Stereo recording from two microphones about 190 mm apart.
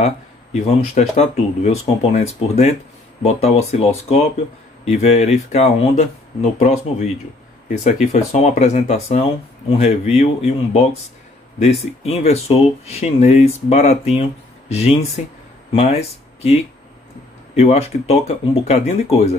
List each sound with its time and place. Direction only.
0.0 s speech: 35° left (ahead or behind)
7.8 s speech: 35° left (ahead or behind)
17.6 s speech: 35° left (ahead or behind)